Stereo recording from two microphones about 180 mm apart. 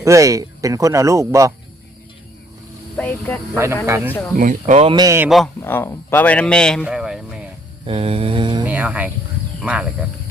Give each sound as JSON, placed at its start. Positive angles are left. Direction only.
{"t": 0.0, "sound": "speech", "side_deg": -15}
{"t": 3.0, "sound": "speech", "side_deg": 10}
{"t": 3.5, "sound": "speech", "side_deg": -15}
{"t": 4.4, "sound": "speech", "side_deg": -45}
{"t": 4.9, "sound": "speech", "side_deg": -15}
{"t": 5.5, "sound": "speech", "side_deg": 15}
{"t": 7.9, "sound": "mantra", "side_deg": -30}
{"t": 8.6, "sound": "speech", "side_deg": -10}